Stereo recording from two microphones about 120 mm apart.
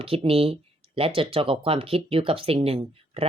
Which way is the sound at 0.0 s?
50° right (ahead or behind).